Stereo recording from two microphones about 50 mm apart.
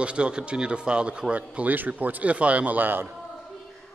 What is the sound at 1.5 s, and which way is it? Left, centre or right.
Speech, right.